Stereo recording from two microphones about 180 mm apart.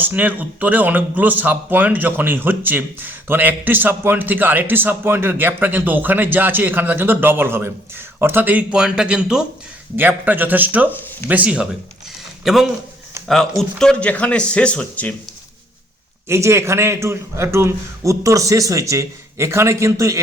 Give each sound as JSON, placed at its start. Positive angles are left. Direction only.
{"t": 0.0, "sound": "a man's voice", "side_deg": -10}
{"t": 16.3, "sound": "a man's voice", "side_deg": -15}